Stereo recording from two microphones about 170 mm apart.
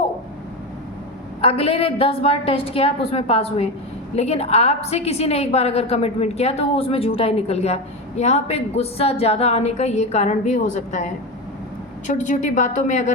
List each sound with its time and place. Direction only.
1.4 s a woman's voice: 35° left (ahead or behind)